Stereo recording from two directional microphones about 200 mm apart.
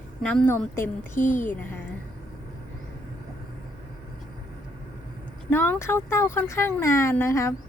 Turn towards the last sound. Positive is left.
turn(degrees=15)  # may be behind; listen again after turning